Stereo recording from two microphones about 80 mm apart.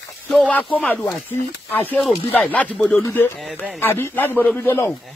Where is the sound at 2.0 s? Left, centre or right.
Centre.